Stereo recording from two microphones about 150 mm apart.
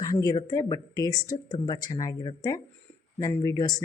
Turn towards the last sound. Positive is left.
turn(degrees=20)  # may be behind; listen again after turning